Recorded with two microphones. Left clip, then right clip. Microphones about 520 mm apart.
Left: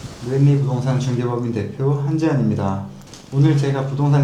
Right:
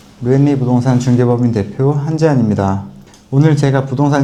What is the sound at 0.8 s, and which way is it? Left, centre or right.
A man's voice, right.